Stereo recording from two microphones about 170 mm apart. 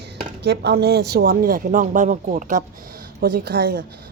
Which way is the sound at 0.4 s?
75° right (ahead or behind).